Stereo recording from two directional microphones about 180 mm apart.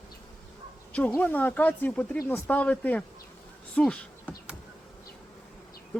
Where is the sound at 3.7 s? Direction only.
5° left (ahead or behind).